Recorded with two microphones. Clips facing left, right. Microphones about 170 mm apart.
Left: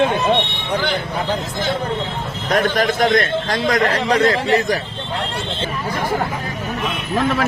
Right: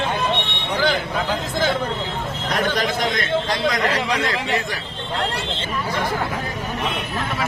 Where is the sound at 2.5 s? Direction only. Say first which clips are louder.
Left 5 dB; 50° left (ahead or behind).